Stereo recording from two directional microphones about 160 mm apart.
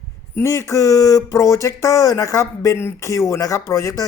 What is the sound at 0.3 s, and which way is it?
Speech, 15° left (ahead or behind).